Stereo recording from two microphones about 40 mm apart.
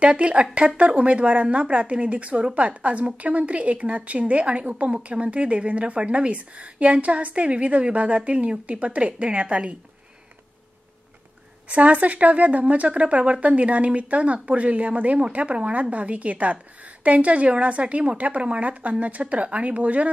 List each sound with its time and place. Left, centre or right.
0.0 s a woman's voice: right
11.7 s a woman's voice: right